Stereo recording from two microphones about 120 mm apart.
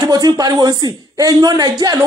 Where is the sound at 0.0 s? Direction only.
35° right (ahead or behind).